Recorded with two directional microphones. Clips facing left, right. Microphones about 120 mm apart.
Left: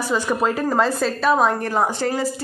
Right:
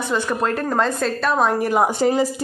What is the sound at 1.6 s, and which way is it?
Speech, 15° right (ahead or behind).